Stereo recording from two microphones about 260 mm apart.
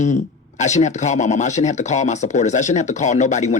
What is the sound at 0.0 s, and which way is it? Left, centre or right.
Speech, left.